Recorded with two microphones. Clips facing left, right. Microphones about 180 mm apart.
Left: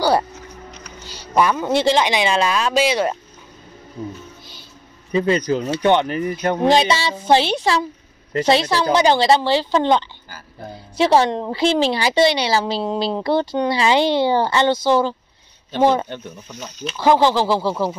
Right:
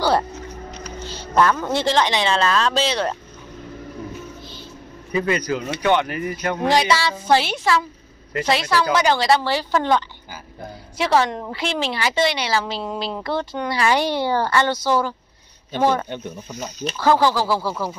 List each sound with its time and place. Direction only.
1.3 s speech: 15° left (ahead or behind)
5.1 s a woman's voice: 30° left (ahead or behind)
16.1 s speech: 10° right (ahead or behind)
17.0 s a woman's voice: 20° left (ahead or behind)